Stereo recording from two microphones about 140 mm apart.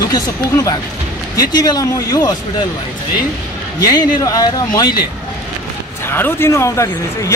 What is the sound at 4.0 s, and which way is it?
Speech, 25° left (ahead or behind).